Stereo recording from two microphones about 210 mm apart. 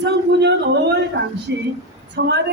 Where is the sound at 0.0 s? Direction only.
55° right (ahead or behind).